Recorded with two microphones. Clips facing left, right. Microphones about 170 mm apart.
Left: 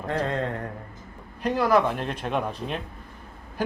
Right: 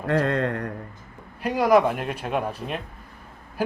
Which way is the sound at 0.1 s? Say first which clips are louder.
Right 4 dB; 70° right (ahead or behind).